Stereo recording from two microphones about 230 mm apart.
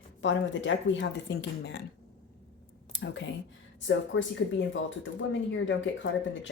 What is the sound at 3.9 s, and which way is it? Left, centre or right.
Speech, left.